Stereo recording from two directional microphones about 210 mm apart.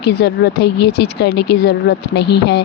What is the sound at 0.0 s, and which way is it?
Speech, 50° left (ahead or behind).